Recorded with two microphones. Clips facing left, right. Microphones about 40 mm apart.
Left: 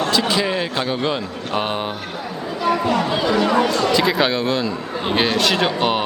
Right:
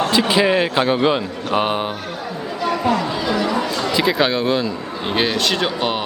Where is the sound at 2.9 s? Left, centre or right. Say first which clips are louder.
Left 1 dB; left.